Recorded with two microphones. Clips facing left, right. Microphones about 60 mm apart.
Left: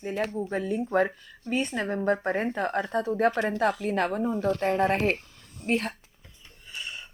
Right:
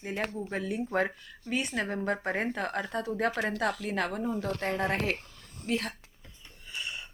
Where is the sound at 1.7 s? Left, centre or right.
Left.